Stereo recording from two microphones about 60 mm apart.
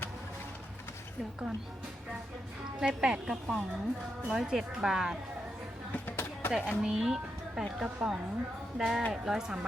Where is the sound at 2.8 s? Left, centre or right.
Centre.